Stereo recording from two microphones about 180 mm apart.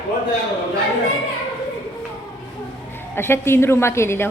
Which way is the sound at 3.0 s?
15° left (ahead or behind).